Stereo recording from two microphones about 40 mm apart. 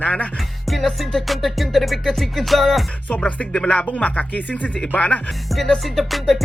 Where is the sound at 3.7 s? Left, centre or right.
Left.